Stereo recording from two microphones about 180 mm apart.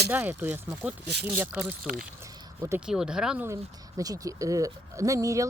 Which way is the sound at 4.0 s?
20° right (ahead or behind).